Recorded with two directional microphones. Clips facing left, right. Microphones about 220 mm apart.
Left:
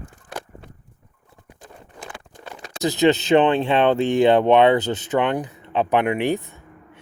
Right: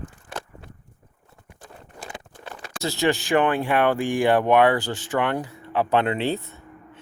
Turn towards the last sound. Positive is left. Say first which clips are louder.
# right 1 dB
turn(degrees=15)  # may be behind; listen again after turning